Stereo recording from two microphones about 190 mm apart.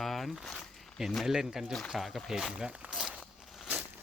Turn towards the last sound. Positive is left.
turn(degrees=-5)  # may be behind; listen again after turning